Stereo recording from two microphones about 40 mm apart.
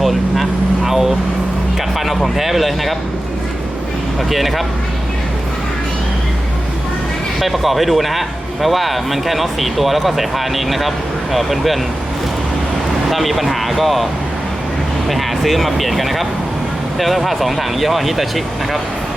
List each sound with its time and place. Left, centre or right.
0.0 s vehicle: centre
0.9 s a sound: centre
2.0 s speech: centre
4.3 s speech: centre
7.3 s speech: centre
13.1 s speech: centre
15.1 s speech: centre